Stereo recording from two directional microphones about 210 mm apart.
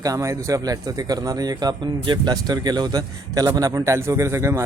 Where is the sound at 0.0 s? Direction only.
15° right (ahead or behind).